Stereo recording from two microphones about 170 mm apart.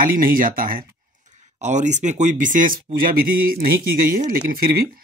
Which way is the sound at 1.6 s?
45° right (ahead or behind).